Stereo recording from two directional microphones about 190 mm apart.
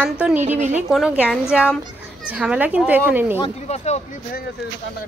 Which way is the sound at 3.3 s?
30° left (ahead or behind).